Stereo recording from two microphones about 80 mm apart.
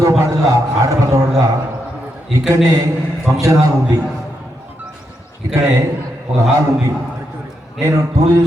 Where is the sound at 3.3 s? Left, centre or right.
Right.